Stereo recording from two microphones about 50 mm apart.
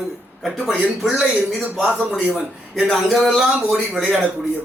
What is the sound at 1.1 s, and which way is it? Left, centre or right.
Speech, centre.